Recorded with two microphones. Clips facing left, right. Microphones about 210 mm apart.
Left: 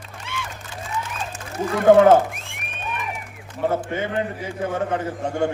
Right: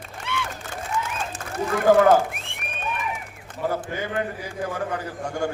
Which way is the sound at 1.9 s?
25° left (ahead or behind).